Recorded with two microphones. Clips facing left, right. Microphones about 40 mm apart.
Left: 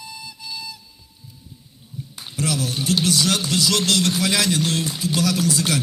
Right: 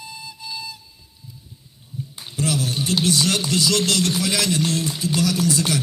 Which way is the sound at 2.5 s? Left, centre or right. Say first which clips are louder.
Right 1 dB; right.